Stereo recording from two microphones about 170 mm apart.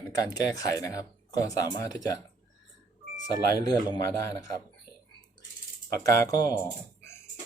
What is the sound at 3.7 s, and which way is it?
Speech, 25° left (ahead or behind).